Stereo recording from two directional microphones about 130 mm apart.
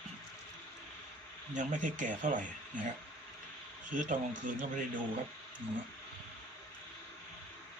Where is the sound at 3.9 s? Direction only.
80° right.